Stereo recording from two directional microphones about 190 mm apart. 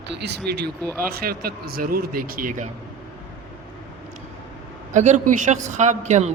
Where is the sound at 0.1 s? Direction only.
60° right (ahead or behind); by 2.6 s 45° right (ahead or behind).